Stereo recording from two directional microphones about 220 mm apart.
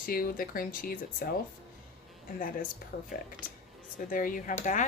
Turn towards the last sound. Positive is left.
turn(degrees=35)  # may be behind; listen again after turning